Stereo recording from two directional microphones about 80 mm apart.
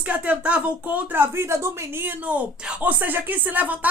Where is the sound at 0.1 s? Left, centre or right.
Centre.